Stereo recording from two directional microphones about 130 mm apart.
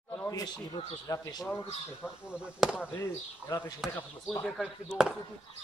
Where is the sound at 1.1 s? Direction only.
25° left (ahead or behind).